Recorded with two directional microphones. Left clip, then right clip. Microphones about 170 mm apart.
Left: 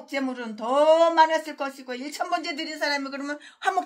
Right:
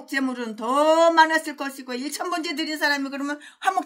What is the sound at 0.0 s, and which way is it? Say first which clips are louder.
Speech: right 3 dB; 25° right (ahead or behind).